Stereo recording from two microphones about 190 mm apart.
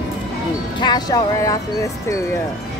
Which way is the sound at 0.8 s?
20° left (ahead or behind).